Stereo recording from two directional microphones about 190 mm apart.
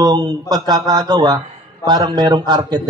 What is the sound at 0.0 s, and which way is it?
A man's voice, 20° right (ahead or behind).